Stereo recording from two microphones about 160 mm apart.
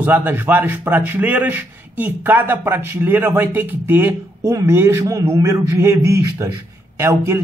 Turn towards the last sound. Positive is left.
turn(degrees=-15)  # may be behind; listen again after turning